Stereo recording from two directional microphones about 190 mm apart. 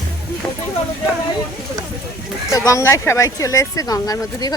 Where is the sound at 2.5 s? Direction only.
15° left (ahead or behind).